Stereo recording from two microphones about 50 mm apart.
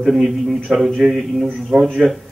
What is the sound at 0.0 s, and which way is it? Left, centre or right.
Speech, centre.